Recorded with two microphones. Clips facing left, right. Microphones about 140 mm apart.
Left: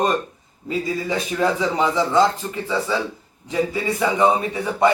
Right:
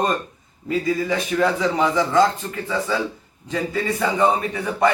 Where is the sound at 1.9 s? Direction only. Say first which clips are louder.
Even; 20° left (ahead or behind).